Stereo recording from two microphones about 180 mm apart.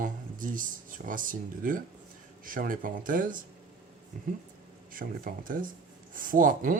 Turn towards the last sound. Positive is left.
turn(degrees=-50)  # may be behind; listen again after turning